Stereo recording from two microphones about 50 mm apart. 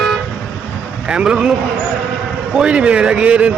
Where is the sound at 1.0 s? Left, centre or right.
Right.